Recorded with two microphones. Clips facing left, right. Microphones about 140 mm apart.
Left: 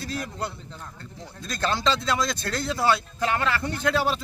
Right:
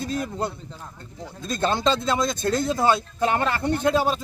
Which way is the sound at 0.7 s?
5° right (ahead or behind).